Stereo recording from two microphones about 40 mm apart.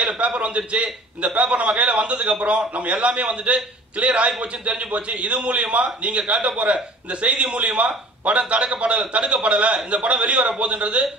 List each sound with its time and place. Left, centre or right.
0.0 s a man's voice: right